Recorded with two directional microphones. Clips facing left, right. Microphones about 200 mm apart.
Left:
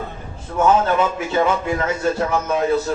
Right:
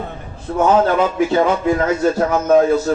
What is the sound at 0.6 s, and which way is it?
A man's voice, 35° right (ahead or behind).